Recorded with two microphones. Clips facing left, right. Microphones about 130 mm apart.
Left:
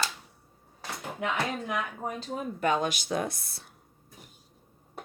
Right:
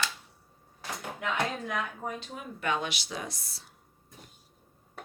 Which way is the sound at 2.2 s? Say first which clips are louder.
Left 6 dB; 40° left (ahead or behind).